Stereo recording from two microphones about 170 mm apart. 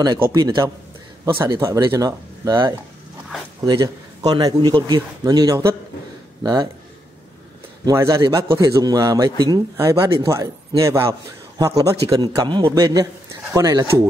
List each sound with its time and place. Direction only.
0.3 s a man's voice: 25° right (ahead or behind)
7.8 s a man's voice: 20° right (ahead or behind)